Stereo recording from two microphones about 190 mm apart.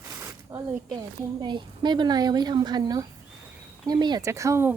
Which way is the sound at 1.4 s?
25° right (ahead or behind).